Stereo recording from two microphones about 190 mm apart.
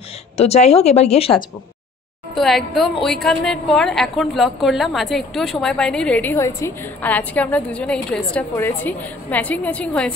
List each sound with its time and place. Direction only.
0.4 s a woman's voice: 35° left (ahead or behind)
2.3 s a woman's voice: centre (ahead or behind)